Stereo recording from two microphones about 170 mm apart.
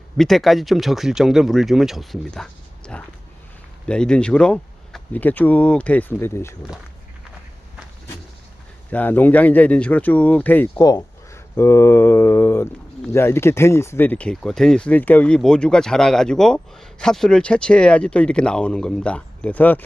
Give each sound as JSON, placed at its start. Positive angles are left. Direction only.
{"t": 0.2, "sound": "speech", "side_deg": 0}
{"t": 8.9, "sound": "speech", "side_deg": 10}
{"t": 10.8, "sound": "speech", "side_deg": 20}